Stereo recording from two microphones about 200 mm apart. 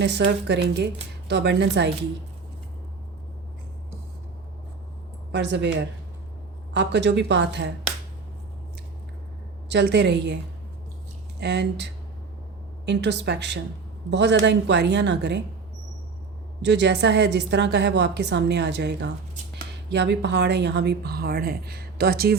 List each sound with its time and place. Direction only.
0.0 s a woman's voice: 60° right (ahead or behind)
5.3 s a woman's voice: 60° right (ahead or behind)
9.6 s a woman's voice: 60° right (ahead or behind)
11.3 s a woman's voice: 60° right (ahead or behind)
16.6 s a woman's voice: 60° right (ahead or behind)